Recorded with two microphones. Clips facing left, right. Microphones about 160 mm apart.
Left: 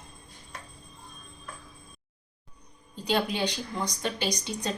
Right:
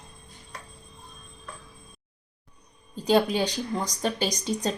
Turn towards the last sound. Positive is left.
turn(degrees=-40)  # may be behind; listen again after turning